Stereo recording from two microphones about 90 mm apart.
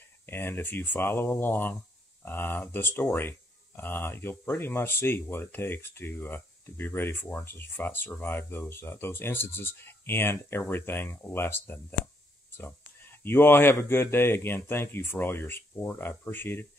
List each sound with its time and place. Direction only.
0.3 s speech: 25° left (ahead or behind)